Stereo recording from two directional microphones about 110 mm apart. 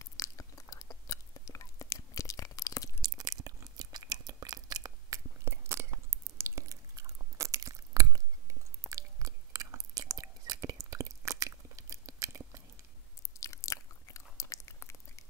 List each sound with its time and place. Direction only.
0.0 s chewing: 30° left (ahead or behind)
3.0 s chewing: 35° right (ahead or behind)
5.4 s chewing: 25° right (ahead or behind)
13.4 s biting: 30° left (ahead or behind)